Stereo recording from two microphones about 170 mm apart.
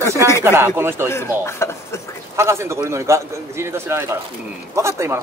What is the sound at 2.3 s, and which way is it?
Speech, 15° right (ahead or behind).